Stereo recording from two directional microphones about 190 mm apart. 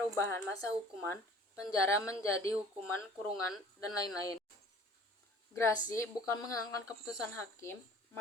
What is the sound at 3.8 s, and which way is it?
Speech, 20° left (ahead or behind).